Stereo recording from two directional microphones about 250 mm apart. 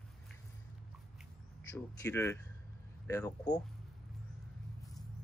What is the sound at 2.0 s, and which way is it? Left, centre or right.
Speech, centre.